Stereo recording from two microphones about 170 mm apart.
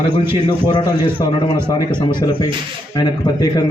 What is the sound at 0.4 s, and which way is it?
A man's voice, 25° left (ahead or behind).